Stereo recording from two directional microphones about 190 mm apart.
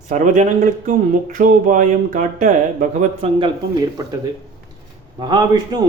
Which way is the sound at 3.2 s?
30° right (ahead or behind).